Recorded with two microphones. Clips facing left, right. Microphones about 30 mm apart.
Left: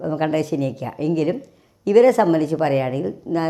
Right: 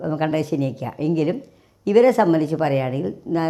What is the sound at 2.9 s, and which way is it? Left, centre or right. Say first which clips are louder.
Speech: left 1 dB; centre.